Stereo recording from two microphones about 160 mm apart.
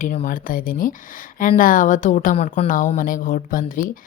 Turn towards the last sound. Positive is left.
turn(degrees=60)  # may be behind; listen again after turning